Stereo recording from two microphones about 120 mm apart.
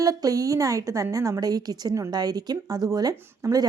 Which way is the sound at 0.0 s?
30° right (ahead or behind).